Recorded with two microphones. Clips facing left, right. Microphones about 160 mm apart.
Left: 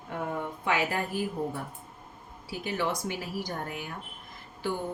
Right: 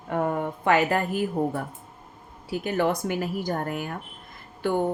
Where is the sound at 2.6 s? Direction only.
50° right (ahead or behind).